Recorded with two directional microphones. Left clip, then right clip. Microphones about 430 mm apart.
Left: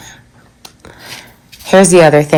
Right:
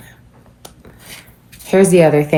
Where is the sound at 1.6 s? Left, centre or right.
Centre.